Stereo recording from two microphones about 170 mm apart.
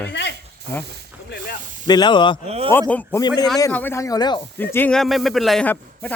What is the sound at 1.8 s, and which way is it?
Speech, 25° left (ahead or behind).